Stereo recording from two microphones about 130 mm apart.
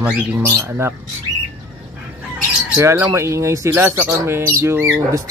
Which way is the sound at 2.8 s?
20° right (ahead or behind).